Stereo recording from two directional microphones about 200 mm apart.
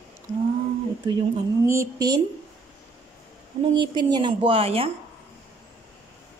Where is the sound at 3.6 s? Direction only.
20° right (ahead or behind).